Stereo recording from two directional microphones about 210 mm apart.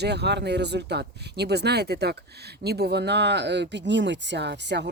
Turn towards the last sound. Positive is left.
turn(degrees=-55)  # may be behind; listen again after turning